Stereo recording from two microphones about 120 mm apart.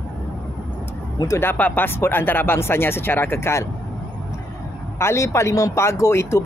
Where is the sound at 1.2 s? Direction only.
25° left (ahead or behind).